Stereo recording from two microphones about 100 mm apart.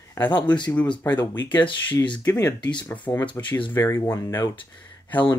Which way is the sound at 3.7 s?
25° left (ahead or behind).